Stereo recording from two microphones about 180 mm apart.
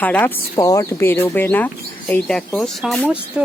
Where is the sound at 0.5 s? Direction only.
20° left (ahead or behind); by 3.1 s 5° left (ahead or behind).